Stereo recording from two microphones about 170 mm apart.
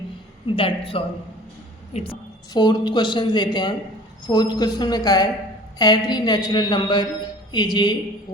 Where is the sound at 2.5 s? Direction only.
25° left (ahead or behind).